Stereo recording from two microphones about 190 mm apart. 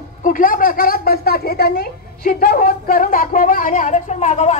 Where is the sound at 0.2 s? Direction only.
45° left (ahead or behind).